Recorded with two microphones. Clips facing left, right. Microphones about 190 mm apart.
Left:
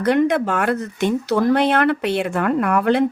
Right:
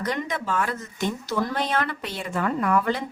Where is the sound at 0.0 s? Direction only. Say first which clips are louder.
Left 11 dB; 65° left (ahead or behind).